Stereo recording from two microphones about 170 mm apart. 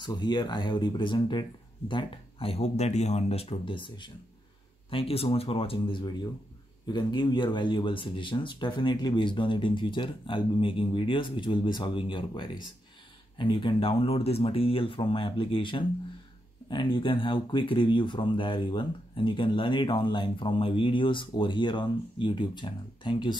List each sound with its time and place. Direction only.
0.0 s speech: 25° left (ahead or behind)